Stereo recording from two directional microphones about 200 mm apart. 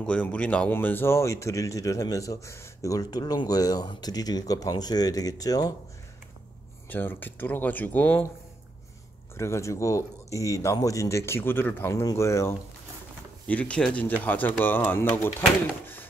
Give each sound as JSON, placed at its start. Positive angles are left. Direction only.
{"t": 0.0, "sound": "speech", "side_deg": 5}
{"t": 6.9, "sound": "speech", "side_deg": 10}
{"t": 9.4, "sound": "speech", "side_deg": 15}